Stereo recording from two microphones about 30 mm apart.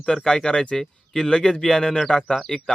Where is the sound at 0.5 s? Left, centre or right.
Left.